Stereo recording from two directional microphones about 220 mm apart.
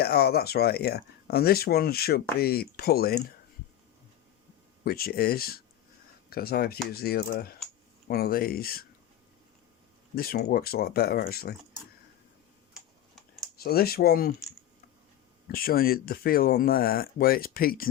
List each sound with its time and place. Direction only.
0.0 s speech: 45° left (ahead or behind)
4.8 s speech: 45° left (ahead or behind)
10.2 s speech: 45° left (ahead or behind)
13.1 s typing: centre (ahead or behind)
13.6 s speech: 45° left (ahead or behind)
15.4 s speech: 40° left (ahead or behind)